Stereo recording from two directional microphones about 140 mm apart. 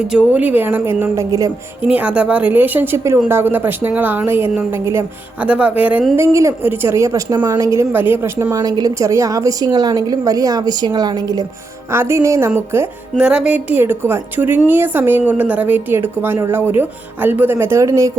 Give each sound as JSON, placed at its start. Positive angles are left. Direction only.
{"t": 0.1, "sound": "a woman's voice", "side_deg": -10}
{"t": 1.8, "sound": "a woman's voice", "side_deg": -10}